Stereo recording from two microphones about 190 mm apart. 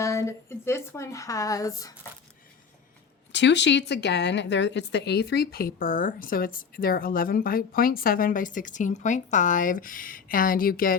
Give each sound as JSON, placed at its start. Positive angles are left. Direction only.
{"t": 0.0, "sound": "speech", "side_deg": 15}
{"t": 3.3, "sound": "a woman's voice", "side_deg": 65}